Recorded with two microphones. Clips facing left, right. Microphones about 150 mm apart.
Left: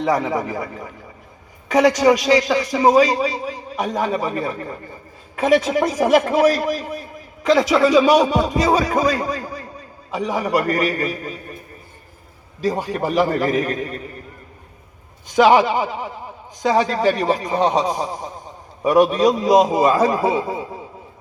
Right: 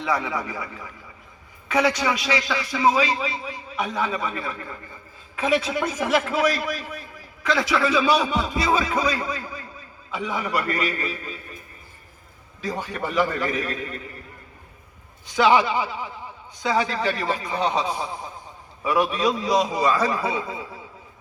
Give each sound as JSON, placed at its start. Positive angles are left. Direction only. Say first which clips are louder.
{"t": 0.0, "sound": "a man's voice", "louder": "left 6 dB", "side_deg": 45}
{"t": 12.6, "sound": "a man's voice", "louder": "left 7 dB", "side_deg": 40}
{"t": 15.4, "sound": "a man's voice", "louder": "left 5 dB", "side_deg": 45}